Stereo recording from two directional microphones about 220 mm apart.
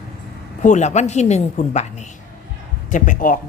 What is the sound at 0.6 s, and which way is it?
A woman's voice, 35° left (ahead or behind).